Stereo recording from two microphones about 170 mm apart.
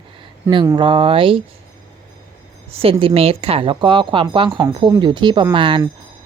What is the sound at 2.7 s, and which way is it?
A woman's voice, 35° right (ahead or behind).